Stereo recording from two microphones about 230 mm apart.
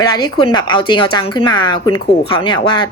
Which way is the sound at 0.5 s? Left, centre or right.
Centre.